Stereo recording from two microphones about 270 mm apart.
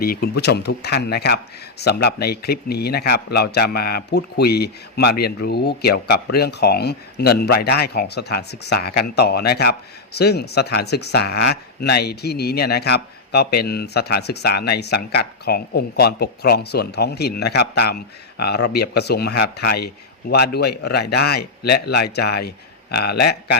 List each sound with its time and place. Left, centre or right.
0.0 s speech: left